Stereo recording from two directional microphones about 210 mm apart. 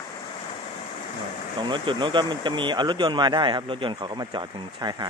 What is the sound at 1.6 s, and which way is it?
Speech, 25° right (ahead or behind).